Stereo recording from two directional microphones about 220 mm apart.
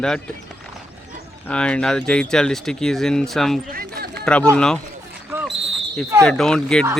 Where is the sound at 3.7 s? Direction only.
45° right (ahead or behind).